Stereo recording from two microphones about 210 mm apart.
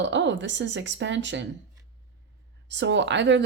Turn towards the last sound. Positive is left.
turn(degrees=-60)  # may be behind; listen again after turning